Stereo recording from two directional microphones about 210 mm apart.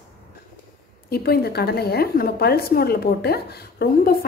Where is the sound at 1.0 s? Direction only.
50° left (ahead or behind).